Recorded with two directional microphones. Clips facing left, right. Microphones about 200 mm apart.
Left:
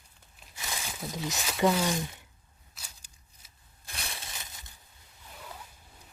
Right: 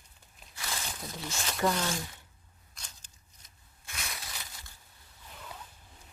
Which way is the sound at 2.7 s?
10° left (ahead or behind).